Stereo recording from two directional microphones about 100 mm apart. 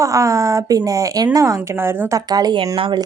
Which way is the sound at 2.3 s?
45° right (ahead or behind).